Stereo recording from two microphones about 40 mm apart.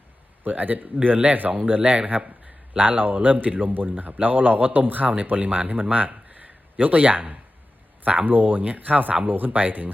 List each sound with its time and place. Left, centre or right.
0.4 s speech: right
6.1 s a sound: right
8.0 s speech: right